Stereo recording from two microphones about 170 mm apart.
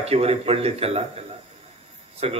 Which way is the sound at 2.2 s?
35° right (ahead or behind).